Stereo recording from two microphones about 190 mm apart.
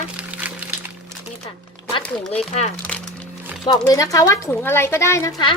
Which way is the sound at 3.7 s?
20° left (ahead or behind).